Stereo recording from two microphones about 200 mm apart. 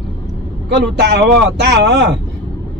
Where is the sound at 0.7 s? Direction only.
60° right (ahead or behind).